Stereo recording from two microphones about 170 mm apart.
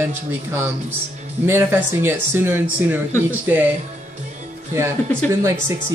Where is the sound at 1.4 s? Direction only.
15° right (ahead or behind).